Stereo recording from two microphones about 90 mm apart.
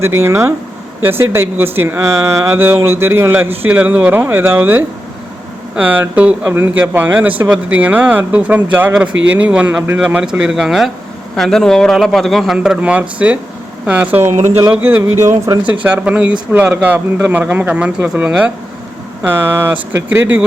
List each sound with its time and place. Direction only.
0.0 s a man's voice: 30° right (ahead or behind)
15.2 s speech: 35° right (ahead or behind)
15.8 s a man's voice: 15° right (ahead or behind)
19.2 s speech: 25° right (ahead or behind)